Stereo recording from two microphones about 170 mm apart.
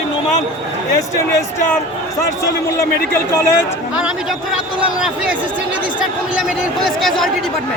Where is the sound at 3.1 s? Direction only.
15° left (ahead or behind).